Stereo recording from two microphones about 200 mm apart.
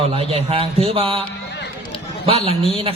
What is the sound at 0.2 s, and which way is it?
A man's voice, 30° right (ahead or behind).